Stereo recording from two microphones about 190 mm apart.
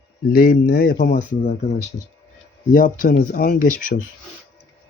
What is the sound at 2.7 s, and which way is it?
Speech, 45° left (ahead or behind).